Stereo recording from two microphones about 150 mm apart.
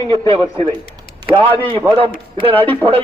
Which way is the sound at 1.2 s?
25° right (ahead or behind).